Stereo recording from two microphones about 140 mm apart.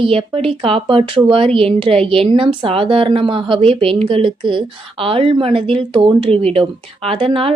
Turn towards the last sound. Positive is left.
turn(degrees=-40)  # may be behind; listen again after turning